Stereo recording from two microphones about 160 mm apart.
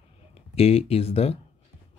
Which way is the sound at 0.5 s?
40° left (ahead or behind).